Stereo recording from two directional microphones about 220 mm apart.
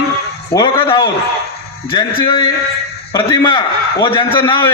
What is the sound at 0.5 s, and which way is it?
A man's voice, 20° left (ahead or behind).